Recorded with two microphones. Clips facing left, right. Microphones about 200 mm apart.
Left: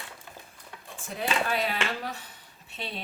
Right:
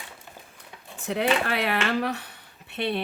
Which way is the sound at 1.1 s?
70° right (ahead or behind).